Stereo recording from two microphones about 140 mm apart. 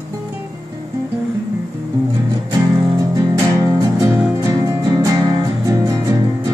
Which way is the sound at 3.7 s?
25° right (ahead or behind).